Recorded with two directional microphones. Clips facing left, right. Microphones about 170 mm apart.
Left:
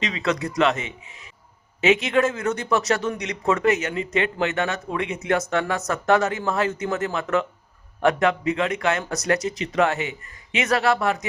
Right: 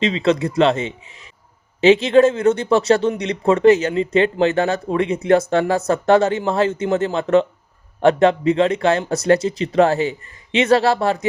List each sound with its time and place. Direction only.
0.0 s speech: 25° right (ahead or behind)